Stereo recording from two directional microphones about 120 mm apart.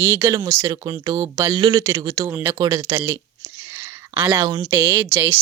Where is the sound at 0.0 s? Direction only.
20° right (ahead or behind); by 1.8 s 40° right (ahead or behind).